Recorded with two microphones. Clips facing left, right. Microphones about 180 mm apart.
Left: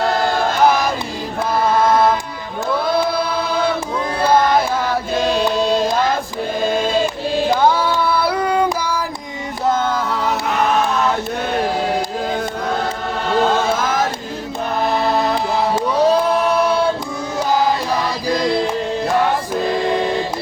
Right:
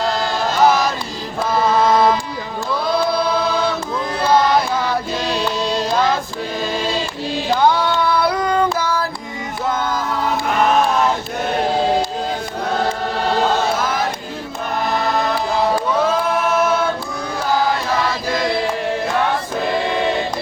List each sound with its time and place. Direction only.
0.0 s chant: 55° left (ahead or behind)
5.1 s music: 50° left (ahead or behind)
5.5 s chant: 50° left (ahead or behind)
7.6 s female singing: 5° left (ahead or behind)
9.6 s music: 50° left (ahead or behind)
13.7 s chant: 45° left (ahead or behind)
16.0 s choir: 35° left (ahead or behind)